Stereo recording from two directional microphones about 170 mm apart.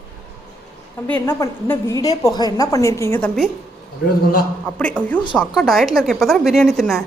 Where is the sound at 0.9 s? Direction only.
10° left (ahead or behind).